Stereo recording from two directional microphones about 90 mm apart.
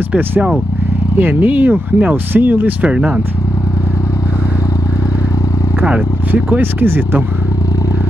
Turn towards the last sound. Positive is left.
turn(degrees=-25)  # may be behind; listen again after turning